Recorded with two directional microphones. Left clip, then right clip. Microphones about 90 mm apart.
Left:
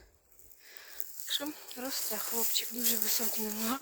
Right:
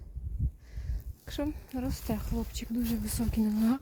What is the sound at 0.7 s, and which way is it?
Speech, 40° right (ahead or behind).